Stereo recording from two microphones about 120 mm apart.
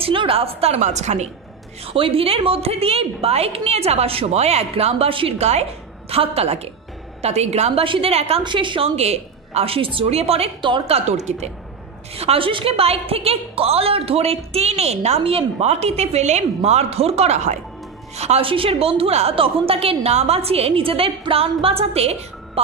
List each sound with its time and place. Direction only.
0.0 s a woman's voice: 50° right (ahead or behind); by 1.3 s 70° right (ahead or behind)
1.9 s a woman's voice: 50° right (ahead or behind); by 7.8 s 65° right (ahead or behind)
7.8 s a woman's voice: 50° right (ahead or behind)
8.5 s a woman's voice: 45° right (ahead or behind); by 11.5 s 70° right (ahead or behind)
12.2 s a woman's voice: 50° right (ahead or behind)